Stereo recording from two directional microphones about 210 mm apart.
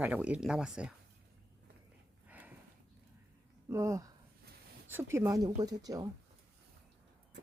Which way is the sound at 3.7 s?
15° right (ahead or behind).